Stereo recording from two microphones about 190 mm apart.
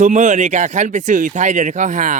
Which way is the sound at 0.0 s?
40° right (ahead or behind).